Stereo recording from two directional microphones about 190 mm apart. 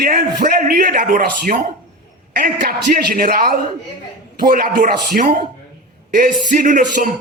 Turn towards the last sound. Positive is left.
turn(degrees=-45)  # may be behind; listen again after turning